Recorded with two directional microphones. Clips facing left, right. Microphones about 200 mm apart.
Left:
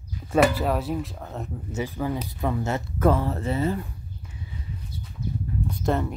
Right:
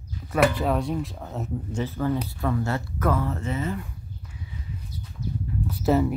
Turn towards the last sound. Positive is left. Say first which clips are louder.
# right 4 dB
turn(degrees=-5)  # may be behind; listen again after turning